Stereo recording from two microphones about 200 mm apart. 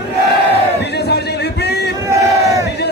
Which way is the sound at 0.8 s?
55° left (ahead or behind).